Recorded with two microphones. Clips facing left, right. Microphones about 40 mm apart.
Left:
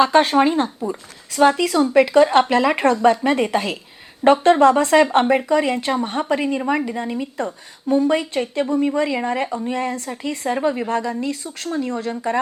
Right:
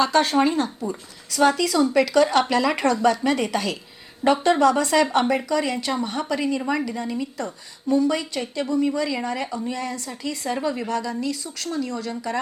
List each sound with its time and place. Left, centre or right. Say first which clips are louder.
0.0 s a woman's voice: left 4 dB; left